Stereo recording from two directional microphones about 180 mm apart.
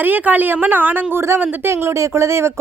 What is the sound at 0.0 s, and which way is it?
A woman's voice, 10° right (ahead or behind).